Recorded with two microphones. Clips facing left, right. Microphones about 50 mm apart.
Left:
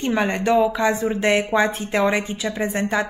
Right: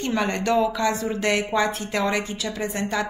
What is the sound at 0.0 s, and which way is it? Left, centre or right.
A woman's voice, left.